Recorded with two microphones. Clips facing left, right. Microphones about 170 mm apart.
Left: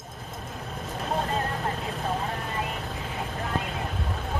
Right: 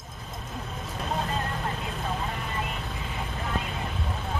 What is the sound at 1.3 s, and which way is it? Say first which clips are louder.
Vehicle: left 2 dB; 40° left (ahead or behind).